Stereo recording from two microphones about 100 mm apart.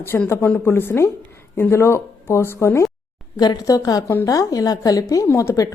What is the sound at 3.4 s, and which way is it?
A woman's voice, 40° left (ahead or behind).